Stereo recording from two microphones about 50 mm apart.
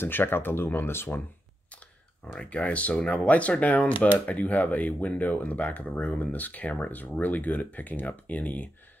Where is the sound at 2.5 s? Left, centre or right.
Left.